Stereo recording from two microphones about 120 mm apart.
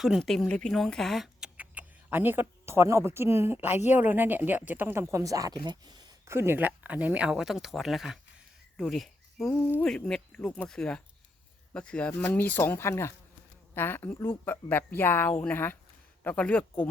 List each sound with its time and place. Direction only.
0.0 s a woman's voice: centre (ahead or behind)
1.5 s speech: 15° right (ahead or behind); by 6.3 s 35° right (ahead or behind)
6.3 s speech: 20° right (ahead or behind); by 16.9 s 15° left (ahead or behind)